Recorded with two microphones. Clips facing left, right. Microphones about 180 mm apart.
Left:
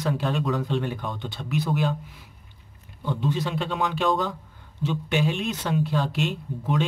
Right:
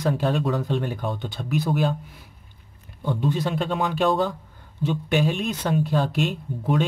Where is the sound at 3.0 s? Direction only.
50° right (ahead or behind).